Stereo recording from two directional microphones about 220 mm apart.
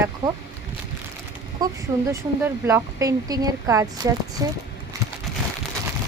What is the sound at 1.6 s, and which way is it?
Speech, 15° right (ahead or behind).